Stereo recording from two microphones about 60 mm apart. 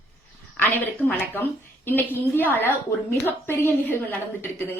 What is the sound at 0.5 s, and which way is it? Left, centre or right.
A woman's voice, left.